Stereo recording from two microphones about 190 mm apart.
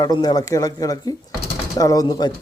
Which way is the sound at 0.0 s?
20° left (ahead or behind).